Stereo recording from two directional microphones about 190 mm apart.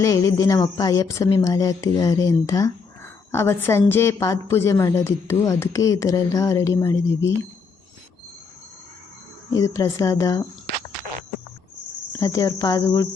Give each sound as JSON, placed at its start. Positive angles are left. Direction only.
{"t": 0.0, "sound": "speech", "side_deg": 15}
{"t": 9.5, "sound": "speech", "side_deg": 15}
{"t": 12.2, "sound": "speech", "side_deg": 15}